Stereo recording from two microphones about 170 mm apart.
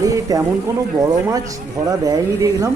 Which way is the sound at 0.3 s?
20° right (ahead or behind).